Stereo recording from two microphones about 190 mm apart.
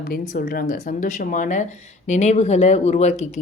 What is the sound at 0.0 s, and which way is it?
A woman's voice, 50° left (ahead or behind).